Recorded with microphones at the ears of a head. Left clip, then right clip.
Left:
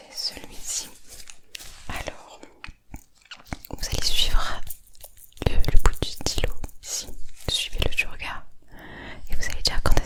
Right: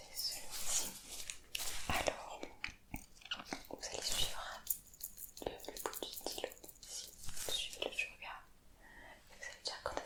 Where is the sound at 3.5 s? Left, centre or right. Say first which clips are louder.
Left 11 dB; left.